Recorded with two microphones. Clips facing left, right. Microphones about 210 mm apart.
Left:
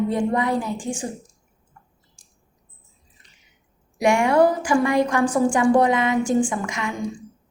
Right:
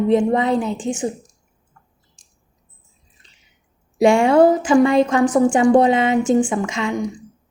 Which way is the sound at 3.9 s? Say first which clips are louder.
Right 5 dB; 30° right (ahead or behind).